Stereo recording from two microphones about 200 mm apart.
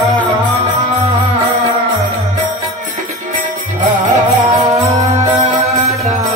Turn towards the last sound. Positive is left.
turn(degrees=-40)  # may be behind; listen again after turning